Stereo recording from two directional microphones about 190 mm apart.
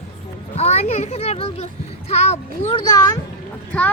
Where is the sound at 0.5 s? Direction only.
35° left (ahead or behind).